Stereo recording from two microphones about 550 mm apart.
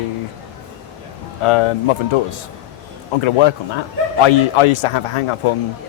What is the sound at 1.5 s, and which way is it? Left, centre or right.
Speech, left.